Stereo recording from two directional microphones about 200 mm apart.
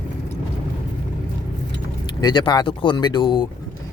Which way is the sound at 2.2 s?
20° left (ahead or behind).